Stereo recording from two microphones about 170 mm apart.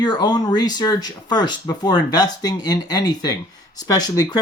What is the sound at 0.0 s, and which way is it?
Speech, 25° left (ahead or behind).